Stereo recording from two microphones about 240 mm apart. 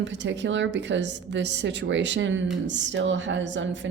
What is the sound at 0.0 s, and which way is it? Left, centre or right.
A woman's voice, right.